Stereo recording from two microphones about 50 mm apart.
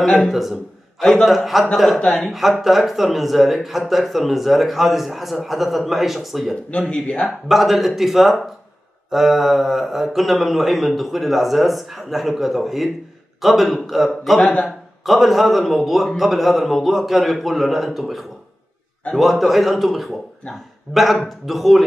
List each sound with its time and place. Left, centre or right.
0.0 s a man's voice: centre
6.5 s speech: centre
7.2 s speech: centre